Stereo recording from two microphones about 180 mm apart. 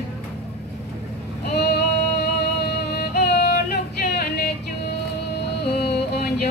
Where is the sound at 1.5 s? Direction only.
65° left (ahead or behind).